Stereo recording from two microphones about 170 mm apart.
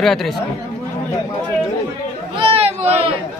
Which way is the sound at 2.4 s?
35° right (ahead or behind).